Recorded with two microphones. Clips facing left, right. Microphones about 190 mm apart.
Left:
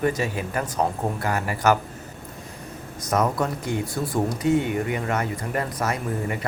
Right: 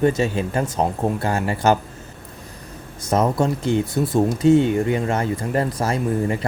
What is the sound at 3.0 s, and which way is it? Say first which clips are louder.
Speech: right 4 dB; 25° right (ahead or behind).